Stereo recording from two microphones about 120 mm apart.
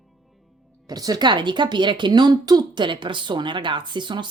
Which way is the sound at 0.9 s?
35° right (ahead or behind).